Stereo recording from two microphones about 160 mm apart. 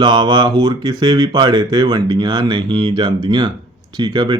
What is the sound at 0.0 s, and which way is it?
Speech, 30° right (ahead or behind).